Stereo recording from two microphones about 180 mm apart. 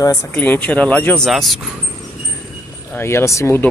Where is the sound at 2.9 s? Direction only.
15° left (ahead or behind).